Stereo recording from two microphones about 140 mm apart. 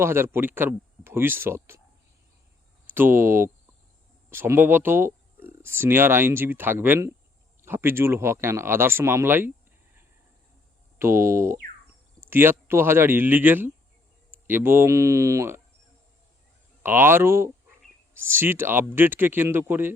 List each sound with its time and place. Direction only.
0.0 s speech: 15° right (ahead or behind)
2.8 s speech: 15° right (ahead or behind)
10.9 s speech: 20° right (ahead or behind)
16.8 s speech: 15° right (ahead or behind)